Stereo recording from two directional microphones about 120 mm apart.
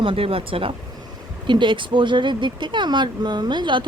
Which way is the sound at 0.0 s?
50° right (ahead or behind).